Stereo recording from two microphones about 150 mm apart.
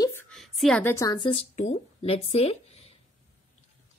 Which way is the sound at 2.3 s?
45° left (ahead or behind).